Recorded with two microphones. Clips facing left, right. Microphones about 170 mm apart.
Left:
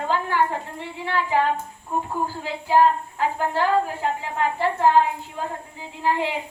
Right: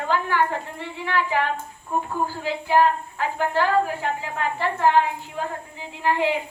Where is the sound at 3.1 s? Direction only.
30° left (ahead or behind).